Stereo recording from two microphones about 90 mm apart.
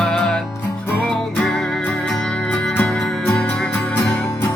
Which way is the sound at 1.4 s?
10° left (ahead or behind).